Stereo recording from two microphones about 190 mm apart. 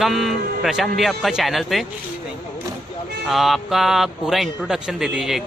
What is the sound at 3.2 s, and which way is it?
Speech, centre (ahead or behind).